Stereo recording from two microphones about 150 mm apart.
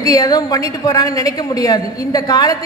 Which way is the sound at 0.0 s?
25° left (ahead or behind).